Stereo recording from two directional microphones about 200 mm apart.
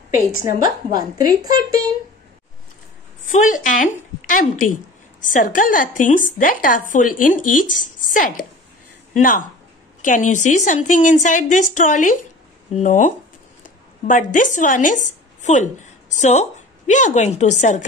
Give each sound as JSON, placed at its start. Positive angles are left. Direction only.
{"t": 0.8, "sound": "speech", "side_deg": -20}
{"t": 3.3, "sound": "a woman's voice", "side_deg": 40}